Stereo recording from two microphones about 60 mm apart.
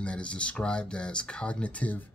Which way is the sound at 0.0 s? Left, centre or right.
Centre.